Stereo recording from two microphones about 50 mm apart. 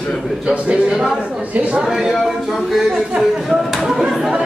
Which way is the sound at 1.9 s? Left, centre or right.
Centre.